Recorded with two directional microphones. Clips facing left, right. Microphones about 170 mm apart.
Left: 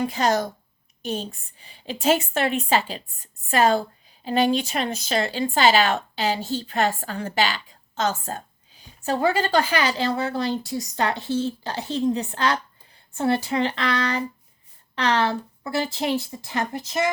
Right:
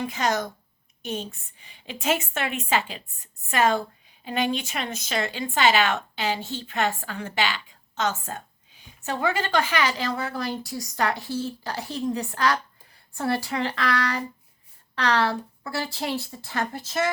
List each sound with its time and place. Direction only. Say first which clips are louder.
0.0 s a woman's voice: left 4 dB; 35° left (ahead or behind); by 17.1 s 15° left (ahead or behind)